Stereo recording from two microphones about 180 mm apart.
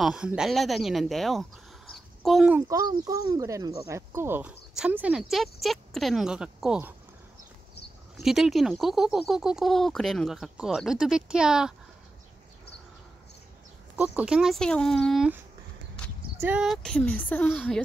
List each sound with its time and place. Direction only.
0.0 s speech: 5° right (ahead or behind)
2.5 s speech: 20° right (ahead or behind)
8.2 s speech: centre (ahead or behind)
13.9 s speech: 5° right (ahead or behind)